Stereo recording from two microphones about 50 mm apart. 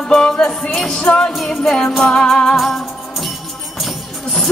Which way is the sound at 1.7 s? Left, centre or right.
Centre.